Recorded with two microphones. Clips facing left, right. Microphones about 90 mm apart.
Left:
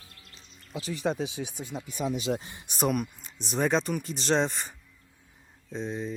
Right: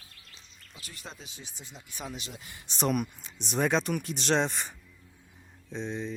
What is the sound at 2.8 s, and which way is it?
Speech, 5° left (ahead or behind).